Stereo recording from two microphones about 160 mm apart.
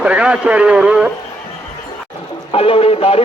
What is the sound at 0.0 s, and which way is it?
Speech, 5° right (ahead or behind).